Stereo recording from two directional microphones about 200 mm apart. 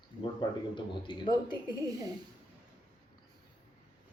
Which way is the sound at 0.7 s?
25° left (ahead or behind).